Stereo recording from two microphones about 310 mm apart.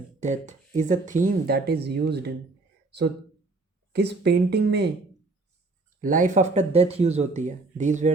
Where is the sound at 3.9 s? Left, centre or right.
Right.